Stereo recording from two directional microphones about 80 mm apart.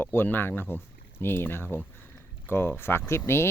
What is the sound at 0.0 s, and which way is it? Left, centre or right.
Speech, left.